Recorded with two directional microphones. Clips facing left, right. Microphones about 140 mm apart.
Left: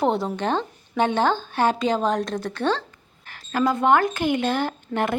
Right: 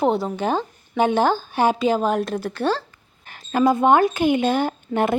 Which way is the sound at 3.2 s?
20° right (ahead or behind).